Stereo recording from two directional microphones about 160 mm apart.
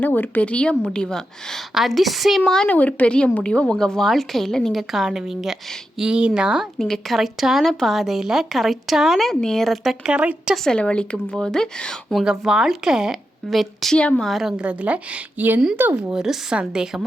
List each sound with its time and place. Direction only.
0.0 s speech: 10° left (ahead or behind)